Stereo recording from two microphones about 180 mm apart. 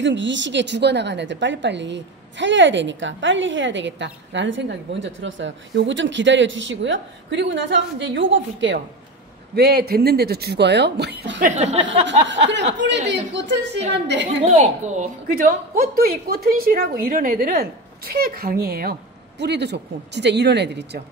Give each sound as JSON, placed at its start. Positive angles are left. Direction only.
{"t": 0.0, "sound": "a woman's voice", "side_deg": -90}
{"t": 9.6, "sound": "a woman's voice", "side_deg": -65}
{"t": 11.4, "sound": "speech", "side_deg": -40}
{"t": 12.1, "sound": "a woman's voice", "side_deg": -80}
{"t": 14.4, "sound": "a woman's voice", "side_deg": -40}